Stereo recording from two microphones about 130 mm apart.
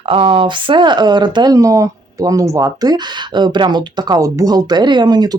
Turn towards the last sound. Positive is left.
turn(degrees=-30)  # may be behind; listen again after turning